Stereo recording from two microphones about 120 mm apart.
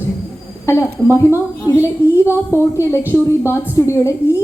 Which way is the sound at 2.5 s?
20° left (ahead or behind).